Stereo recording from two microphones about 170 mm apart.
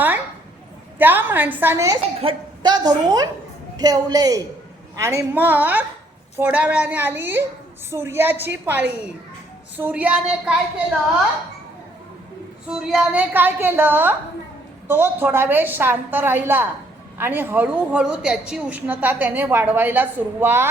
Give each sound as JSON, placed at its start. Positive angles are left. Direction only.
{"t": 0.9, "sound": "a woman's voice", "side_deg": -10}
{"t": 12.6, "sound": "a woman's voice", "side_deg": -5}